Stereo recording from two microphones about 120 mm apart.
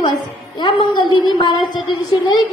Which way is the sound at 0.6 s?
40° left (ahead or behind).